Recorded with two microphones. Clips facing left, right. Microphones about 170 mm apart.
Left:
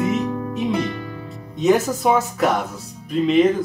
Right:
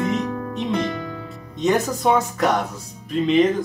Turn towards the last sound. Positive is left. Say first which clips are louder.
# left 1 dB
turn(degrees=0)  # may be behind; listen again after turning